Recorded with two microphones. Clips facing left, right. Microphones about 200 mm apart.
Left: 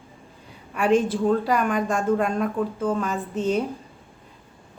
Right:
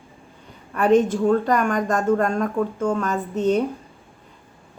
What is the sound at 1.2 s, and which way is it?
Speech, 5° left (ahead or behind).